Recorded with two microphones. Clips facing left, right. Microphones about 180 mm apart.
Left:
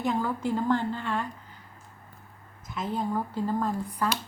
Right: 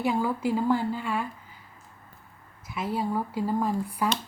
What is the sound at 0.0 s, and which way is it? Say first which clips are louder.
Speech: right 2 dB; 10° right (ahead or behind).